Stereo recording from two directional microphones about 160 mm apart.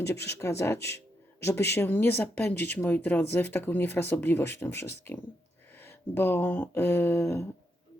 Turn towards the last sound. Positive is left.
turn(degrees=15)  # may be behind; listen again after turning